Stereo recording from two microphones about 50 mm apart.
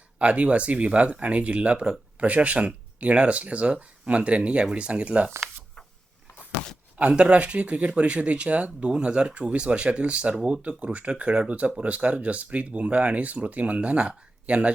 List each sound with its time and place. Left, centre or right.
0.2 s speech: right
7.1 s speech: right